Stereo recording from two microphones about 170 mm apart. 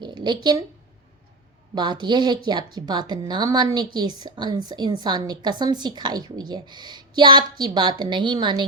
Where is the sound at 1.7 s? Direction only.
25° right (ahead or behind).